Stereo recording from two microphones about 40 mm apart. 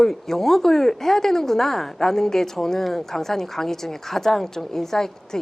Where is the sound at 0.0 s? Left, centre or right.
Centre.